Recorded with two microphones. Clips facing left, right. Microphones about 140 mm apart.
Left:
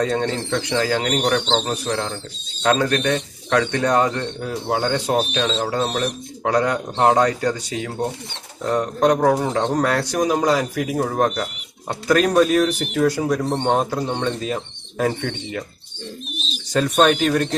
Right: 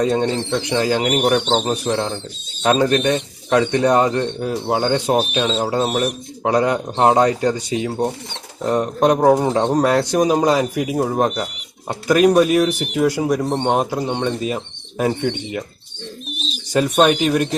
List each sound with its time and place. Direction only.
0.0 s speech: 20° right (ahead or behind)
1.7 s speech: 25° right (ahead or behind); by 6.1 s 10° right (ahead or behind)
6.4 s speech: 20° right (ahead or behind)
16.7 s speech: 10° right (ahead or behind)